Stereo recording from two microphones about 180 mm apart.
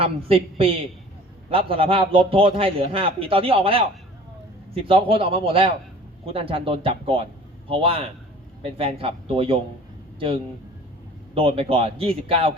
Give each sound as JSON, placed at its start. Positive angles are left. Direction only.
{"t": 0.0, "sound": "a man's voice", "side_deg": -30}
{"t": 11.3, "sound": "a man's voice", "side_deg": -30}